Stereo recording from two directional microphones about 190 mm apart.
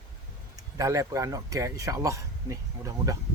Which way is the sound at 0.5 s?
20° right (ahead or behind).